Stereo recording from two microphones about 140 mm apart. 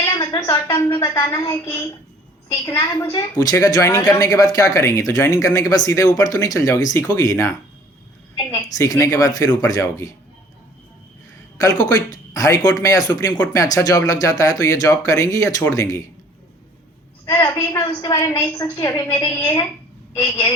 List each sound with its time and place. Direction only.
0.0 s a woman's voice: 25° left (ahead or behind)
8.8 s a woman's voice: 25° left (ahead or behind)
11.6 s a woman's voice: 25° left (ahead or behind)
17.2 s a woman's voice: 25° left (ahead or behind)